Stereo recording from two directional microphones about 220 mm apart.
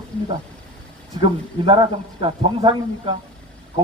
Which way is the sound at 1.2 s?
20° right (ahead or behind).